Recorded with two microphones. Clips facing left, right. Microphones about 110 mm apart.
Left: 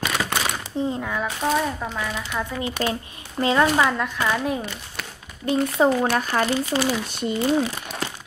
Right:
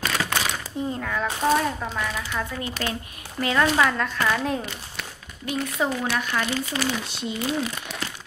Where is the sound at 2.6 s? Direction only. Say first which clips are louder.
Left 4 dB; 20° left (ahead or behind).